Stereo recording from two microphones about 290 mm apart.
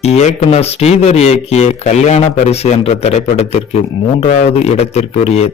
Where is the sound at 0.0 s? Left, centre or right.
Left.